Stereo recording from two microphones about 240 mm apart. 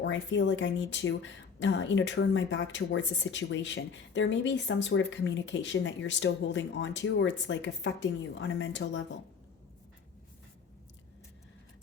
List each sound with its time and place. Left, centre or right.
0.0 s speech: left